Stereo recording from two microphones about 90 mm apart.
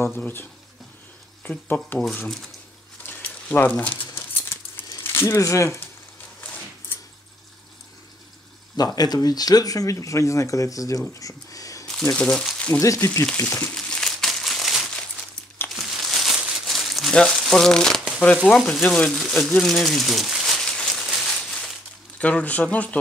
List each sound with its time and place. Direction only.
0.0 s speech: 25° left (ahead or behind)
2.2 s speech: 5° left (ahead or behind)
3.1 s a sound: 20° left (ahead or behind)
5.0 s speech: 25° left (ahead or behind)
8.7 s speech: 50° left (ahead or behind)
11.1 s a sound: 40° left (ahead or behind)
11.9 s speech: 10° left (ahead or behind)
12.7 s speech: 35° left (ahead or behind)
13.7 s crumpling: 5° left (ahead or behind)
16.3 s crumpling: 10° right (ahead or behind)
16.6 s crumpling: centre (ahead or behind)
18.7 s speech: 10° left (ahead or behind)
19.6 s a sound: 5° left (ahead or behind)
22.2 s speech: 15° left (ahead or behind)